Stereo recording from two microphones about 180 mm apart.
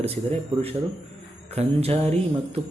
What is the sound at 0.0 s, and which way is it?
Speech, 35° right (ahead or behind).